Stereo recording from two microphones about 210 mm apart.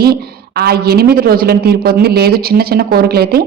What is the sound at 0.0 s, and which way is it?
A woman's voice, 50° right (ahead or behind).